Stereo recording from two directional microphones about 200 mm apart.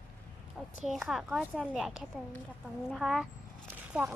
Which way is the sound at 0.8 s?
Centre (ahead or behind).